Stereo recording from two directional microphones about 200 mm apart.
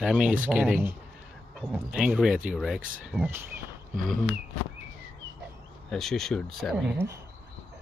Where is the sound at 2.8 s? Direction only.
45° right (ahead or behind).